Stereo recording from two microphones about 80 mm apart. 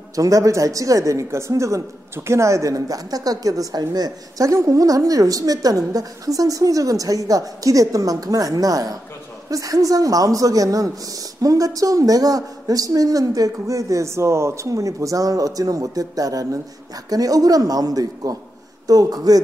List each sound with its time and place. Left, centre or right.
0.1 s speech: right